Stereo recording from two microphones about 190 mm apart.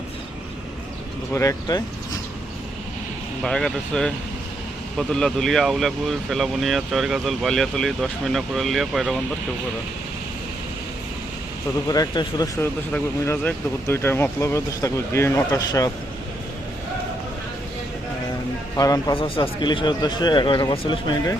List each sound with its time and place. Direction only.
1.3 s speech: 15° left (ahead or behind)
3.4 s speech: 5° left (ahead or behind)
11.9 s speech: 20° left (ahead or behind)
12.5 s speech: 10° left (ahead or behind)
18.8 s speech: 20° left (ahead or behind)